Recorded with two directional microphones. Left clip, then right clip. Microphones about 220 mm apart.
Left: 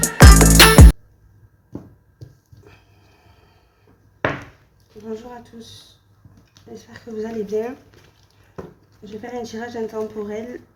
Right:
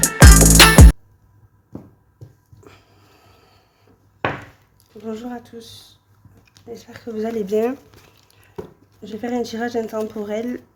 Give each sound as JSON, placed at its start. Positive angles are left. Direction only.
{"t": 0.0, "sound": "music", "side_deg": 0}
{"t": 5.0, "sound": "speech", "side_deg": -50}